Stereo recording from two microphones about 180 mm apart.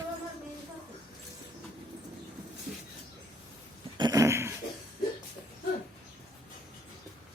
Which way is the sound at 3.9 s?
20° right (ahead or behind).